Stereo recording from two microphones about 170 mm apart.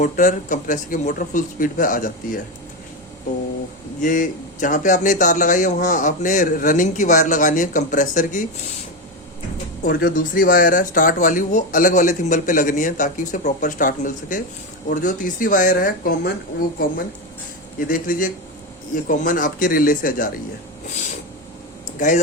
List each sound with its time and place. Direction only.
0.0 s speech: 50° left (ahead or behind)
4.0 s speech: 50° left (ahead or behind)
9.9 s speech: 60° left (ahead or behind)
17.7 s speech: 55° left (ahead or behind)
21.9 s speech: 45° left (ahead or behind)